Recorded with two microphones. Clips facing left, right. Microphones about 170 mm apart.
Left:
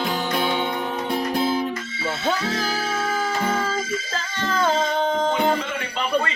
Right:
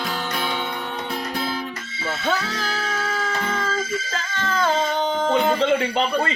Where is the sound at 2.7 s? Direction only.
10° left (ahead or behind).